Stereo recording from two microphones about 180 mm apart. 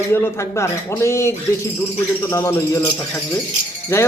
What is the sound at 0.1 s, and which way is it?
A man's voice, 15° left (ahead or behind).